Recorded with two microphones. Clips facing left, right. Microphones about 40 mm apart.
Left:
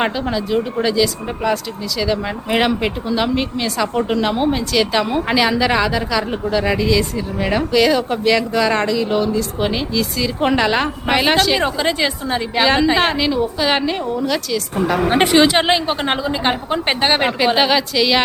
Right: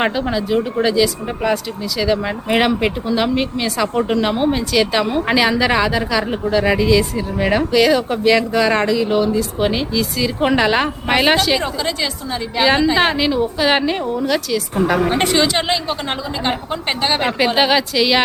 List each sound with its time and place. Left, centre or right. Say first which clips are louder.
0.0 s speech: right 1 dB; centre
11.6 s a woman's voice: left 3 dB; left
12.6 s speech: right 1 dB; centre
15.1 s a woman's voice: left 3 dB; left
17.4 s speech: right 2 dB; centre